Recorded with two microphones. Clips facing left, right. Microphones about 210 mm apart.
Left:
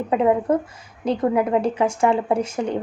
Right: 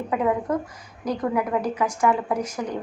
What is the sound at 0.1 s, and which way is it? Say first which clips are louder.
A woman's voice: left 5 dB; 25° left (ahead or behind).